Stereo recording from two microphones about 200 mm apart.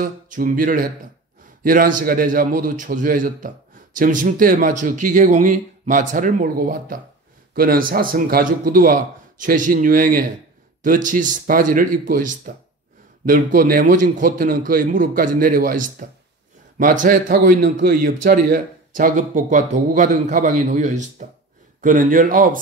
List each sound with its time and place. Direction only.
0.0 s a man's voice: 45° right (ahead or behind)